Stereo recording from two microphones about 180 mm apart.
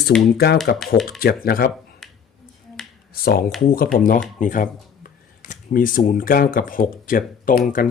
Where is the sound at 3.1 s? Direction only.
55° left (ahead or behind).